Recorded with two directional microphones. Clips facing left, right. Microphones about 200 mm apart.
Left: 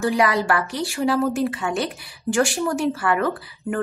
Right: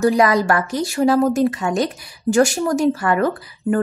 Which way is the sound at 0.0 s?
40° right (ahead or behind).